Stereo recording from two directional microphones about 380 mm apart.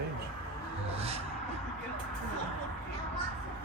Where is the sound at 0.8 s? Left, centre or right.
Centre.